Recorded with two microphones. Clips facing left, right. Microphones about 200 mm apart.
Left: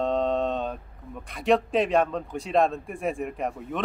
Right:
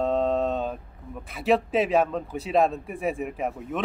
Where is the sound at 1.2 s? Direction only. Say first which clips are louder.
Even; 5° right (ahead or behind).